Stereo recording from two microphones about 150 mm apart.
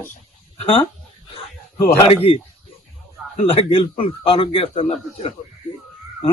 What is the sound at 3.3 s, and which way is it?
Speech, 40° left (ahead or behind).